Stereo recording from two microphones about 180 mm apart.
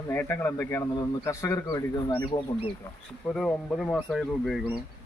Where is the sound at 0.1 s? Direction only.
10° left (ahead or behind); by 2.6 s 25° left (ahead or behind).